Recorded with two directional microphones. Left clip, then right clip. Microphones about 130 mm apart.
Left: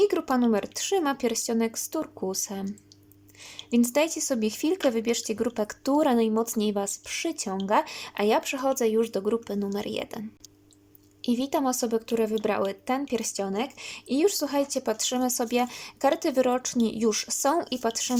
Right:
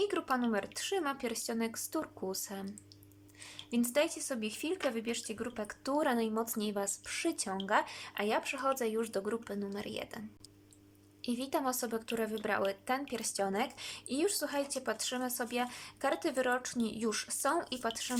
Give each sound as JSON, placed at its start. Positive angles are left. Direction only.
{"t": 0.0, "sound": "speech", "side_deg": 30}
{"t": 3.7, "sound": "speech", "side_deg": 25}